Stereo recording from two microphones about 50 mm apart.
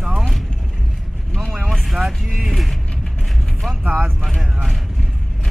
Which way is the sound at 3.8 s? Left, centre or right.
Right.